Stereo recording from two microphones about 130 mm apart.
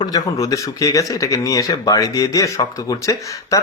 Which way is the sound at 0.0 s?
30° left (ahead or behind).